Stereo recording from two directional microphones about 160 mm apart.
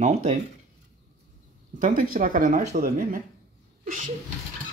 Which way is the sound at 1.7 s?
55° right (ahead or behind).